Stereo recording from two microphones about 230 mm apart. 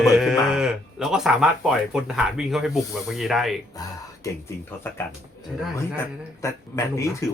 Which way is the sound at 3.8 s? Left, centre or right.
Centre.